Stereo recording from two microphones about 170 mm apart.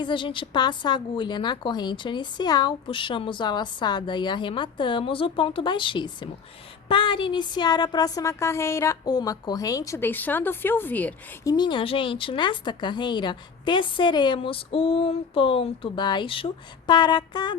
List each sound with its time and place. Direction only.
0.0 s a woman's voice: 30° left (ahead or behind); by 11.1 s 10° left (ahead or behind)
11.4 s a woman's voice: 25° left (ahead or behind)